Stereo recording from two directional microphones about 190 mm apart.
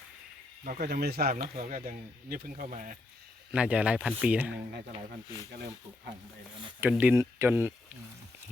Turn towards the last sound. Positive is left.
turn(degrees=-10)  # may be behind; listen again after turning